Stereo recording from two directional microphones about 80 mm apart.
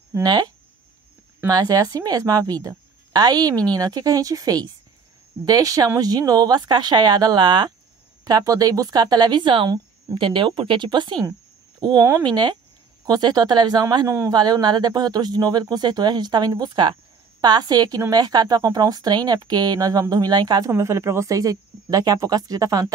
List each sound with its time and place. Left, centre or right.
0.2 s speech: right
1.5 s a woman's voice: right
8.2 s speech: right
13.0 s speech: right
14.0 s a man's voice: right
14.3 s speech: right
20.7 s speech: right